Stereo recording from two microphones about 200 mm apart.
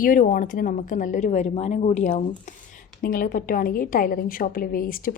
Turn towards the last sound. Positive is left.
turn(degrees=45)  # may be behind; listen again after turning